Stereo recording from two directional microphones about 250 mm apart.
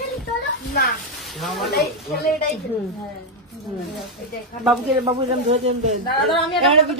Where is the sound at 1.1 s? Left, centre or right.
Centre.